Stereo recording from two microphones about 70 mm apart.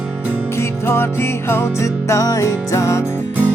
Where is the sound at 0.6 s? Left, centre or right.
Left.